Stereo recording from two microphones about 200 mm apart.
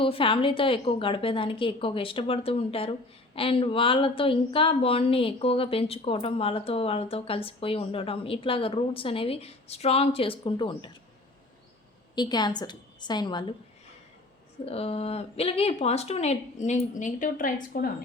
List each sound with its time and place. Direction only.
0.0 s a woman's voice: 25° left (ahead or behind)
12.1 s a woman's voice: 20° left (ahead or behind)
14.6 s speech: 30° left (ahead or behind)